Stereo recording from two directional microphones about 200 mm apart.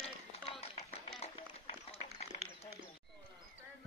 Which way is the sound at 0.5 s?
30° left (ahead or behind).